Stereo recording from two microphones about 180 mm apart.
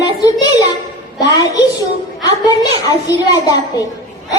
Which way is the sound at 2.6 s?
20° left (ahead or behind).